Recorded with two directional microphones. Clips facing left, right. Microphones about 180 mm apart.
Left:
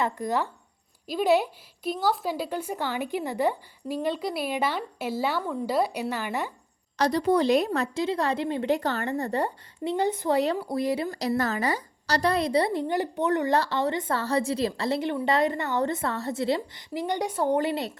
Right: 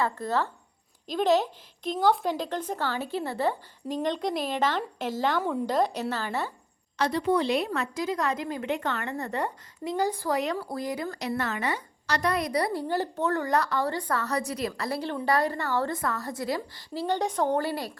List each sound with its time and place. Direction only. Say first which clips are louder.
0.0 s speech: left 1 dB; 15° left (ahead or behind)
7.0 s a woman's voice: left 3 dB; 40° left (ahead or behind); by 11.2 s 25° left (ahead or behind)
11.2 s a woman's voice: left 4 dB; 35° left (ahead or behind)